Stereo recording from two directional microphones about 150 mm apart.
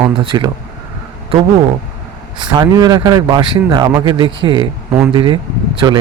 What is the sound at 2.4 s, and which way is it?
A man's voice, 30° right (ahead or behind).